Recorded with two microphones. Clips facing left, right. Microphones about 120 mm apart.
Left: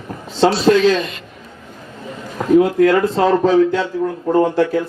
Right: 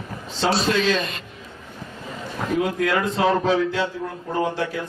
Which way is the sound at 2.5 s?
40° left (ahead or behind).